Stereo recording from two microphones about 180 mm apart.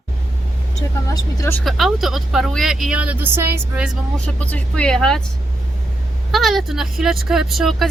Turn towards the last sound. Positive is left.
turn(degrees=0)  # may be behind; listen again after turning